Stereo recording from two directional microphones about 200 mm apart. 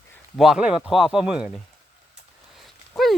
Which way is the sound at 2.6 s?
Centre (ahead or behind).